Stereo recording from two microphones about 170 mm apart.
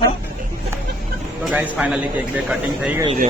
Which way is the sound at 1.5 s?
5° right (ahead or behind).